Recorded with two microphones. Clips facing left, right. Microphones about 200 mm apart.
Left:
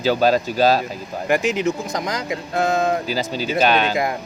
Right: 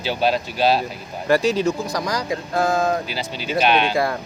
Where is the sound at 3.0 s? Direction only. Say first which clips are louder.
Left 5 dB; 40° left (ahead or behind).